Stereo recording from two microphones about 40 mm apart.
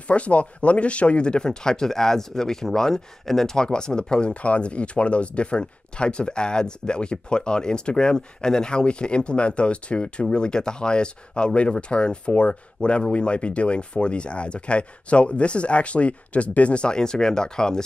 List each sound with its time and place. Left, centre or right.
0.1 s speech: left; by 17.8 s centre